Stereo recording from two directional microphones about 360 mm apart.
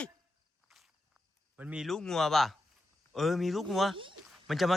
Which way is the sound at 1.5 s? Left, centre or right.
Centre.